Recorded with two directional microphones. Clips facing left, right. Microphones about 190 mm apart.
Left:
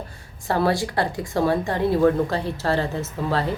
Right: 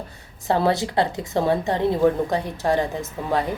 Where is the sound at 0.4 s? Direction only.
20° right (ahead or behind).